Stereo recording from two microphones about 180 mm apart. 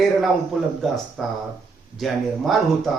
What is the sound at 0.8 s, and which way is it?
Speech, centre (ahead or behind).